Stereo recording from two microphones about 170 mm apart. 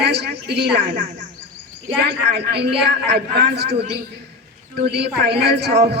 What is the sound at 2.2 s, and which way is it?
A man's voice, 80° right.